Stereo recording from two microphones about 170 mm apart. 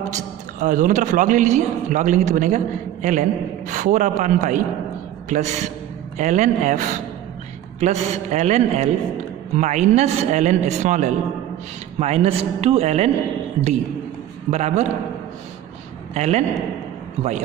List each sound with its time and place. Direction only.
0.1 s a man's voice: 50° right (ahead or behind)
14.5 s a man's voice: 40° right (ahead or behind)
16.1 s a man's voice: 40° right (ahead or behind)